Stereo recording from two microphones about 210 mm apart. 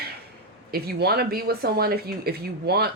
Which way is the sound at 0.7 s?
50° right (ahead or behind).